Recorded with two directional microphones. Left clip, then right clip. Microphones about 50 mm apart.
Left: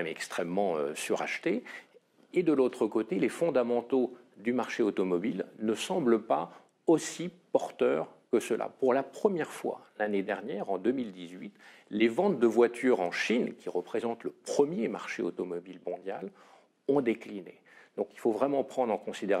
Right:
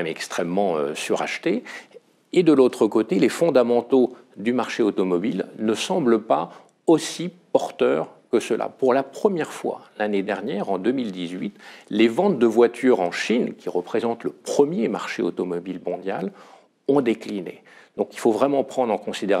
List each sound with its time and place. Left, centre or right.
0.0 s speech: right
2.3 s speech: right
4.6 s speech: centre
5.7 s speech: right; by 11.5 s centre
12.0 s speech: right
12.6 s speech: right
13.1 s speech: right
14.7 s speech: right
16.8 s speech: centre
18.0 s speech: right; by 19.3 s centre